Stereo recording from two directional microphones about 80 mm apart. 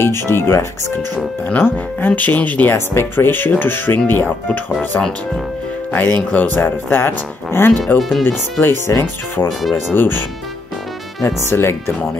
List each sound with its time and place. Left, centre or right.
0.0 s speech: left
5.9 s speech: left
8.0 s speech: centre
8.3 s speech: left
11.2 s speech: left